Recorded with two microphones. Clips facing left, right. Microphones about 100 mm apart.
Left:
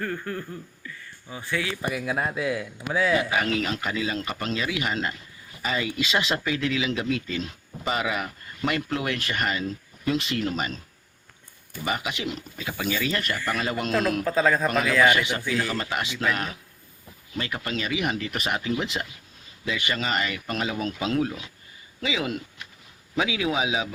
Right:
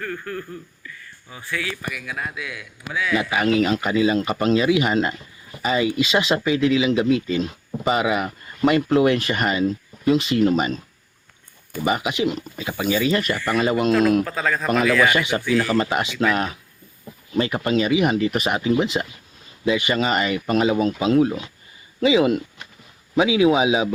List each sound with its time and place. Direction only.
0.0 s a man's voice: 25° left (ahead or behind)
3.2 s speech: 15° right (ahead or behind)
11.9 s speech: 15° right (ahead or behind)
14.3 s a man's voice: 25° left (ahead or behind)
15.1 s speech: 20° right (ahead or behind)